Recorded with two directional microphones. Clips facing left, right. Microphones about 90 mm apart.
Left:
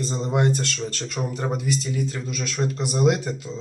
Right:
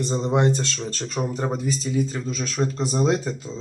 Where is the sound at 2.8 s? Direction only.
35° right (ahead or behind).